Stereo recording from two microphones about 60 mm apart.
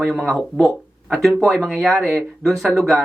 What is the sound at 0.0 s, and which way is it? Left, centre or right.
Speech, centre.